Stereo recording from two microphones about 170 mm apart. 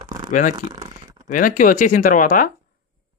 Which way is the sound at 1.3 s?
50° left (ahead or behind).